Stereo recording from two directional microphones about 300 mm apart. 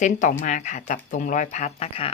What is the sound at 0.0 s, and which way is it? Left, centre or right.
Speech, left.